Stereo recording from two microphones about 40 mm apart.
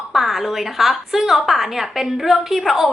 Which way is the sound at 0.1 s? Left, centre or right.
Centre.